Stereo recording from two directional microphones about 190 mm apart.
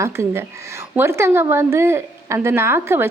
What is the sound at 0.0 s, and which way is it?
A woman's voice, 15° right (ahead or behind).